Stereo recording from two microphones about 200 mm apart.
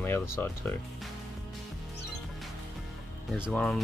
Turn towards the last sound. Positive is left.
turn(degrees=0)  # may be behind; listen again after turning